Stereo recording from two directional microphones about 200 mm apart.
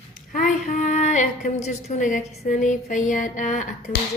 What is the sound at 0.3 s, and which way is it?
A woman's voice, 40° left (ahead or behind).